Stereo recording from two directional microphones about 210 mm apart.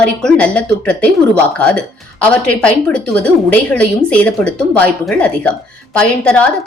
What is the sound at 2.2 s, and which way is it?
Speech, 5° left (ahead or behind).